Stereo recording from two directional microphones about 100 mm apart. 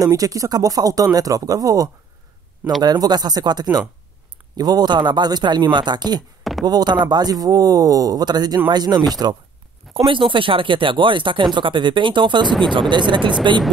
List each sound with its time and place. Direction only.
0.0 s speech: 35° right (ahead or behind)
9.9 s speech: 55° right (ahead or behind)
12.4 s speech: centre (ahead or behind)
12.9 s speech: 50° right (ahead or behind)